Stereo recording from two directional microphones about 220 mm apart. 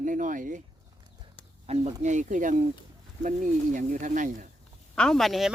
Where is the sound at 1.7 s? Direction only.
30° right (ahead or behind).